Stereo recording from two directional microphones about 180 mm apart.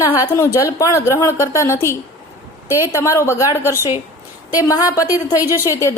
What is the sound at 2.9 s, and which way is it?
A woman's voice, 15° left (ahead or behind).